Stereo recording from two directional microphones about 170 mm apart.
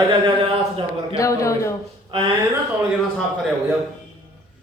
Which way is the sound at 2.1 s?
35° right (ahead or behind).